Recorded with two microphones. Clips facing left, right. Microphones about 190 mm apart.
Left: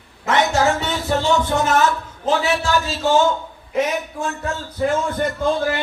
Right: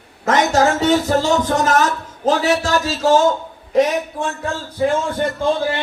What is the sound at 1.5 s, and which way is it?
A man's voice, 40° right (ahead or behind).